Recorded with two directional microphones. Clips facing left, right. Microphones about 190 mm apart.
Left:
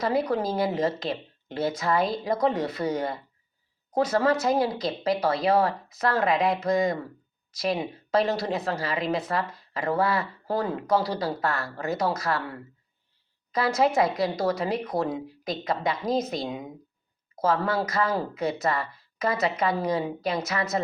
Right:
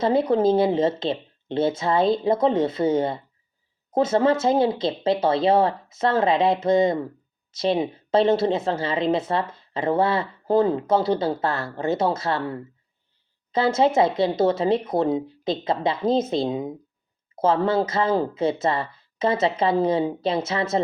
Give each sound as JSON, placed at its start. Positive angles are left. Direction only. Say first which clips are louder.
{"t": 0.0, "sound": "a woman's voice", "louder": "right 6 dB", "side_deg": -25}